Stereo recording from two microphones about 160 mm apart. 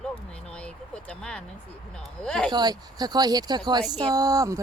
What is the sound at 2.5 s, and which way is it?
Speech, 25° right (ahead or behind).